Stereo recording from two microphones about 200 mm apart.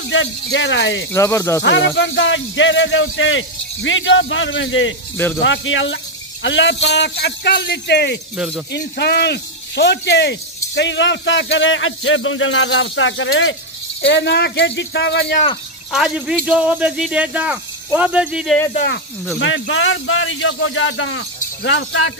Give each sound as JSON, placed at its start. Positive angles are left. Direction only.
{"t": 0.1, "sound": "speech", "side_deg": 70}
{"t": 1.1, "sound": "speech", "side_deg": 15}
{"t": 1.6, "sound": "a man's voice", "side_deg": 65}
{"t": 14.0, "sound": "a man's voice", "side_deg": 60}
{"t": 15.9, "sound": "speech", "side_deg": 0}
{"t": 19.4, "sound": "speech", "side_deg": 70}